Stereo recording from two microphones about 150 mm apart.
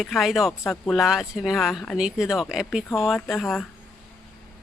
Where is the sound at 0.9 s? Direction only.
Centre (ahead or behind).